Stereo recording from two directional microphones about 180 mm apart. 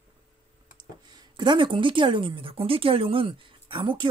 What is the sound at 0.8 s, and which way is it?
Speech, 25° right (ahead or behind).